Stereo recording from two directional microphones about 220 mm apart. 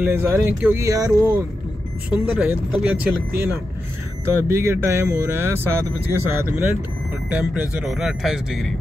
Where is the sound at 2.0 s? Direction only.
Centre (ahead or behind).